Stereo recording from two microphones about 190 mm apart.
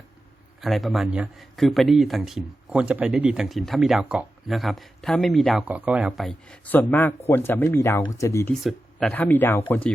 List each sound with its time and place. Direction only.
0.6 s a man's voice: centre (ahead or behind); by 8.5 s 15° left (ahead or behind)
8.6 s speech: 5° left (ahead or behind)